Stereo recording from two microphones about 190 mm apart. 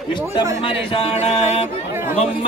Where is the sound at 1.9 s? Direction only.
15° right (ahead or behind).